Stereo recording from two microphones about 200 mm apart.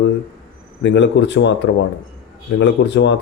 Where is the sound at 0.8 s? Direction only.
60° left (ahead or behind).